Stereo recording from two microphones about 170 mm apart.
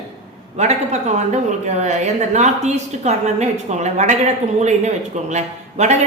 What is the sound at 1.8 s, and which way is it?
A woman's voice, 40° right (ahead or behind).